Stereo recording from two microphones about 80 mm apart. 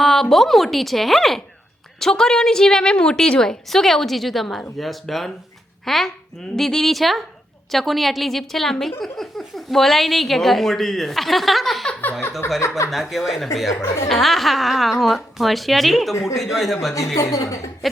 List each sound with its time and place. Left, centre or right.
0.0 s a woman's voice: centre
12.5 s speech: left
12.9 s a woman's voice: centre
17.2 s a woman's voice: left
17.8 s a woman's voice: centre